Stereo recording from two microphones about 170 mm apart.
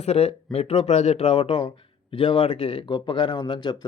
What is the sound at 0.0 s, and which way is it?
Speech, 40° left (ahead or behind).